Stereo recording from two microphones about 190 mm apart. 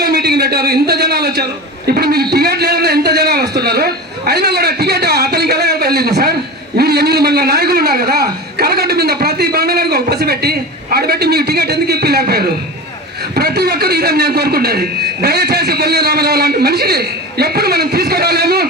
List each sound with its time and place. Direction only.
0.0 s a man's voice: 55° right (ahead or behind)